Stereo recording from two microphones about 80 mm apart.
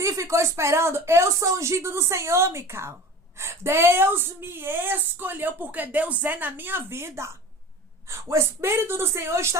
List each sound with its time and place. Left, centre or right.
0.0 s speech: right